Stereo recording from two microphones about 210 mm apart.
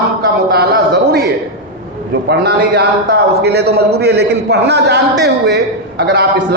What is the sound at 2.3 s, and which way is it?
A man's voice, 50° right (ahead or behind).